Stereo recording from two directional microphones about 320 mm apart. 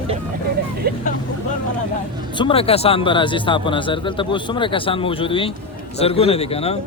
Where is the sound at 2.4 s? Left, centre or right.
Centre.